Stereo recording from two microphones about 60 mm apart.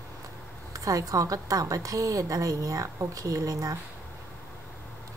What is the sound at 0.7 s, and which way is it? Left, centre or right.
A woman's voice, right.